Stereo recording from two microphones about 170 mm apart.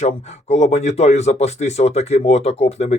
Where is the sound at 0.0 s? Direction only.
40° left (ahead or behind).